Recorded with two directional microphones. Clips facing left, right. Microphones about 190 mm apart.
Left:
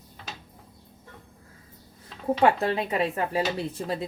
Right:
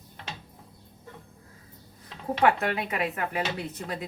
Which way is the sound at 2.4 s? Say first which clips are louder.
Left 1 dB; 30° left (ahead or behind).